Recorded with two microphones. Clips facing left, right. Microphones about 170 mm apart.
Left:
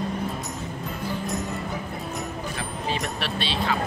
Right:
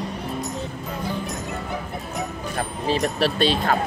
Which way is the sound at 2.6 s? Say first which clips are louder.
Right 8 dB; 40° right (ahead or behind).